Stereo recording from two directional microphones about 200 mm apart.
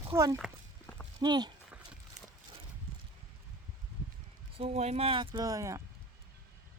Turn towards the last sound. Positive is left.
turn(degrees=-15)  # may be behind; listen again after turning